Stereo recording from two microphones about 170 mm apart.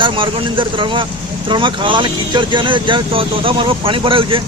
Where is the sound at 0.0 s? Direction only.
30° right (ahead or behind).